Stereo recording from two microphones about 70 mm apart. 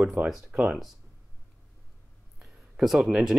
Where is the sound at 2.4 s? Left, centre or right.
Centre.